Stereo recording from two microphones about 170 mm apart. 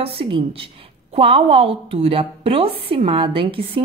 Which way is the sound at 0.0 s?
35° right (ahead or behind).